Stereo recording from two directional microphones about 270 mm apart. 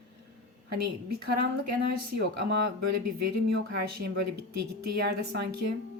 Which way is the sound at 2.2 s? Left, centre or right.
Right.